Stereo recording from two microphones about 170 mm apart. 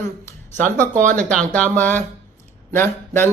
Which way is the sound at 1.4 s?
10° left (ahead or behind).